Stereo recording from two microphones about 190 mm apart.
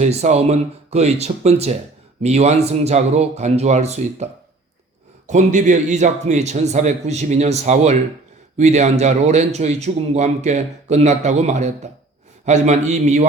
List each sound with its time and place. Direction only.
0.0 s a man's voice: 35° right (ahead or behind)